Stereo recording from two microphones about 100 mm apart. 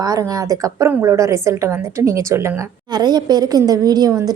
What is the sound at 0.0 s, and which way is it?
A woman's voice, 35° right (ahead or behind).